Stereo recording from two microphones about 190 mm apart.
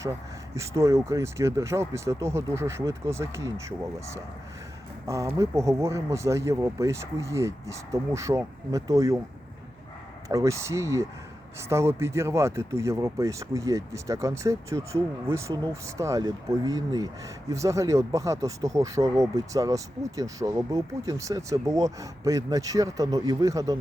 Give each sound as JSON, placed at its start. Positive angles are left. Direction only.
{"t": 0.5, "sound": "speech", "side_deg": -15}
{"t": 10.2, "sound": "speech", "side_deg": -15}